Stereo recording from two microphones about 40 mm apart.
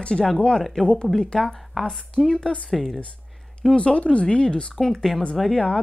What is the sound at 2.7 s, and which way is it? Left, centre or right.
Speech, centre.